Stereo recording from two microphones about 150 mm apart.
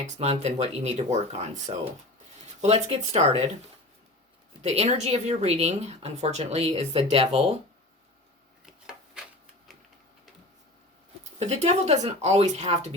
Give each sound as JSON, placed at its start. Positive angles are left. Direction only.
{"t": 0.0, "sound": "speech", "side_deg": -45}
{"t": 4.6, "sound": "speech", "side_deg": -45}
{"t": 8.6, "sound": "rub", "side_deg": -5}
{"t": 11.3, "sound": "speech", "side_deg": -50}